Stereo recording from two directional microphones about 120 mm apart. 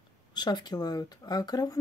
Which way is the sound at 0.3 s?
35° left (ahead or behind).